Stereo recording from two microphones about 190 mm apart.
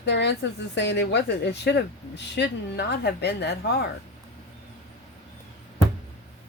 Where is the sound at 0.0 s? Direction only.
65° left (ahead or behind).